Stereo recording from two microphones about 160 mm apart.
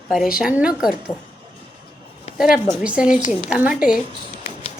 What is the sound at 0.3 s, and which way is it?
Speech, 5° right (ahead or behind).